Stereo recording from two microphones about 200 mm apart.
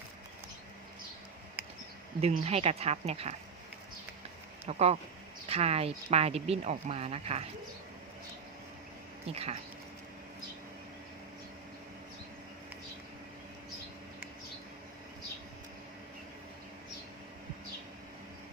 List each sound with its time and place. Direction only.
1.6 s insect: 10° right (ahead or behind)
2.2 s speech: 30° right (ahead or behind)
4.6 s speech: 30° right (ahead or behind)
9.3 s speech: 30° right (ahead or behind)